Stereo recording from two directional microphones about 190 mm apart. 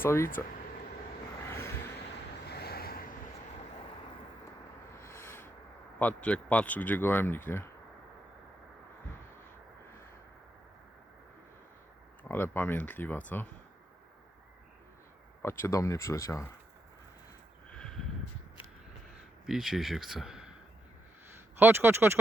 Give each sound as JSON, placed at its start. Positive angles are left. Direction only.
{"t": 0.0, "sound": "speech", "side_deg": 15}
{"t": 1.5, "sound": "a sound", "side_deg": 15}
{"t": 2.5, "sound": "vehicle", "side_deg": 55}
{"t": 5.0, "sound": "a sound", "side_deg": 15}
{"t": 6.0, "sound": "speech", "side_deg": 5}
{"t": 12.3, "sound": "speech", "side_deg": 10}
{"t": 15.4, "sound": "speech", "side_deg": 15}
{"t": 17.7, "sound": "a sound", "side_deg": 5}
{"t": 19.5, "sound": "speech", "side_deg": 0}
{"t": 21.6, "sound": "speech", "side_deg": -10}